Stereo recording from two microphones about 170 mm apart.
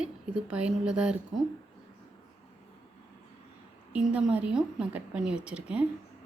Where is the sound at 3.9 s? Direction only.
10° right (ahead or behind).